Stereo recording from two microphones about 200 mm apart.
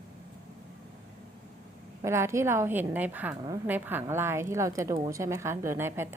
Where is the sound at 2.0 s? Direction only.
15° right (ahead or behind).